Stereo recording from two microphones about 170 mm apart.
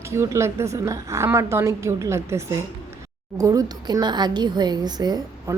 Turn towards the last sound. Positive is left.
turn(degrees=-20)  # may be behind; listen again after turning